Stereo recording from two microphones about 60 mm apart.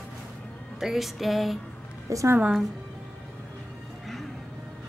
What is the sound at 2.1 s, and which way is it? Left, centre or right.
Speech, right.